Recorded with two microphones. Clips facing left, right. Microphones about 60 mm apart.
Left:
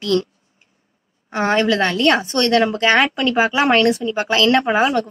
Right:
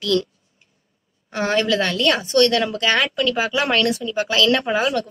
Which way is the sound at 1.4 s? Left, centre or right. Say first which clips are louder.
Left 3 dB; centre.